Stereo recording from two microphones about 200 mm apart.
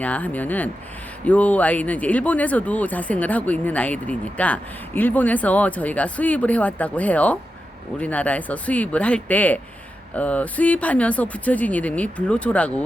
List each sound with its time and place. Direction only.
0.0 s speech: 5° left (ahead or behind)